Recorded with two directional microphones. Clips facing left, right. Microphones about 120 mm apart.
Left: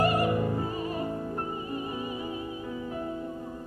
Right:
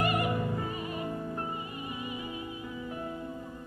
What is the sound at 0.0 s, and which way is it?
Opera, 35° left (ahead or behind).